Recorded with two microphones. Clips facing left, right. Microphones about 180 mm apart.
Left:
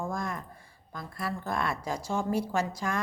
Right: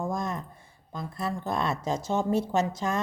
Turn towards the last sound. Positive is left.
turn(degrees=-25)  # may be behind; listen again after turning